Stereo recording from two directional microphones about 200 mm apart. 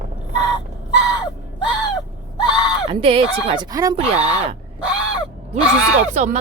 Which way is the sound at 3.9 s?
30° right (ahead or behind).